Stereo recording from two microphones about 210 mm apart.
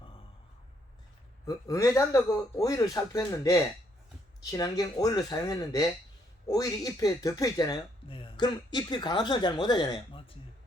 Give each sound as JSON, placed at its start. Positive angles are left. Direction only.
{"t": 1.5, "sound": "speech", "side_deg": 15}